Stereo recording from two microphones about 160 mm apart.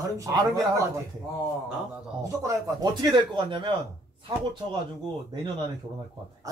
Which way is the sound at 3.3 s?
30° right (ahead or behind).